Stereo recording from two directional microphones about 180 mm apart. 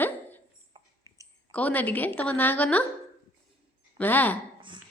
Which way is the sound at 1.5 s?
10° left (ahead or behind).